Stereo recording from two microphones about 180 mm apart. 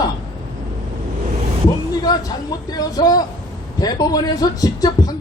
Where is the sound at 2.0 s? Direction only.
20° left (ahead or behind).